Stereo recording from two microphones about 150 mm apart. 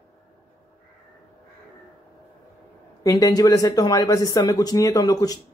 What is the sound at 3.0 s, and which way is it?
Speech, 25° left (ahead or behind).